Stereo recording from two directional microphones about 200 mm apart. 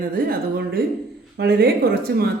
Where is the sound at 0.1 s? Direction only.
50° right (ahead or behind).